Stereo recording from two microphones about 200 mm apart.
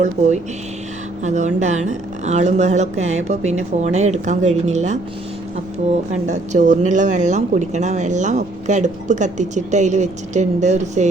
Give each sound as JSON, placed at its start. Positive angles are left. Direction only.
{"t": 0.2, "sound": "a woman's voice", "side_deg": -35}
{"t": 6.1, "sound": "a woman's voice", "side_deg": -35}